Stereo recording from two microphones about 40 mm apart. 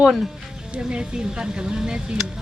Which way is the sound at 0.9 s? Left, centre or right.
Right.